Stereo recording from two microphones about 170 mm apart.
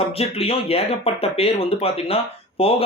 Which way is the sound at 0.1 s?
35° left (ahead or behind).